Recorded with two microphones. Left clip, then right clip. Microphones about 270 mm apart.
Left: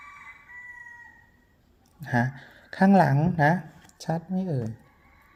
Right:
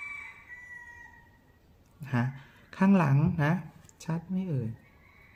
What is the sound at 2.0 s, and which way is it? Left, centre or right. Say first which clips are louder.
Speech: left 7 dB; centre.